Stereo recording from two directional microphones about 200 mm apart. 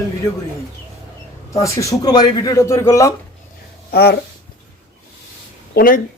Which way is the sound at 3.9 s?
55° left (ahead or behind).